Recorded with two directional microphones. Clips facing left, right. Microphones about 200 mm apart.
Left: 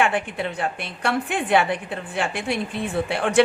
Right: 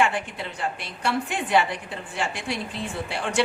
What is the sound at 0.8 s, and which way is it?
A woman's voice, 55° left (ahead or behind).